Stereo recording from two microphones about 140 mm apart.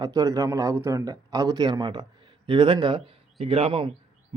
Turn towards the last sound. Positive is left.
turn(degrees=-40)  # may be behind; listen again after turning